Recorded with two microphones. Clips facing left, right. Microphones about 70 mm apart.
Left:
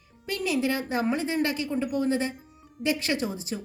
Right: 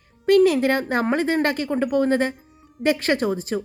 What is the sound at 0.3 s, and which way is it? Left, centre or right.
A woman's voice, right.